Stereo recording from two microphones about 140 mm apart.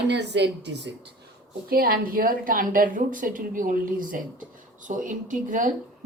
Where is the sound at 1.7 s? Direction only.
90° right.